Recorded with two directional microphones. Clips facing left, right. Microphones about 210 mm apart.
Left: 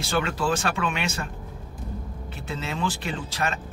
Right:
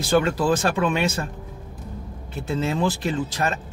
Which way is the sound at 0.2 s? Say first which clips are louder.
Right 5 dB; 35° right (ahead or behind).